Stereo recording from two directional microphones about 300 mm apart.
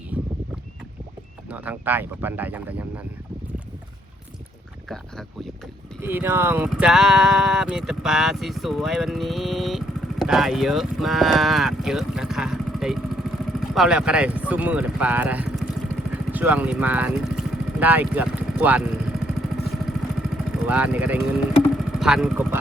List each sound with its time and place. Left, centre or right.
1.5 s speech: centre
4.9 s a sound: centre
6.0 s speech: centre
16.3 s vehicle: centre
20.3 s speech: centre